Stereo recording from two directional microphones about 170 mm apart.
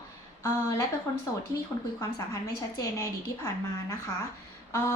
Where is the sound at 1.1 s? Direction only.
20° left (ahead or behind).